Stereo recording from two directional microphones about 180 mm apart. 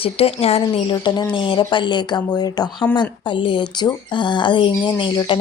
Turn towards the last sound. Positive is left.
turn(degrees=30)  # may be behind; listen again after turning